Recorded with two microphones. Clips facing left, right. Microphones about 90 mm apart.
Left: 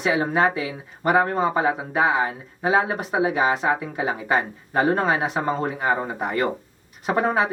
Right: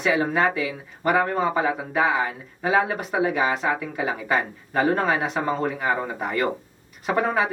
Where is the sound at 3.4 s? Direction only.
25° left (ahead or behind).